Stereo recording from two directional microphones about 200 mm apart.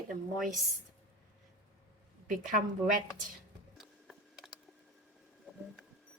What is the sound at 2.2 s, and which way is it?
Speech, 45° right (ahead or behind).